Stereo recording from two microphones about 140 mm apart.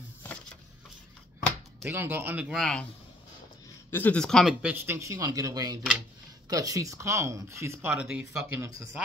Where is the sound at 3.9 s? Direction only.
10° left (ahead or behind).